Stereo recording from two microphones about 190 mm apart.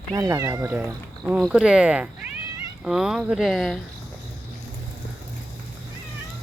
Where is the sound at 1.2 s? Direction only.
Centre (ahead or behind).